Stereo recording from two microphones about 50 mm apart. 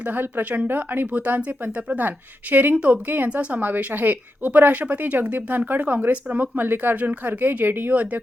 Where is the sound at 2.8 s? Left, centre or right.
Right.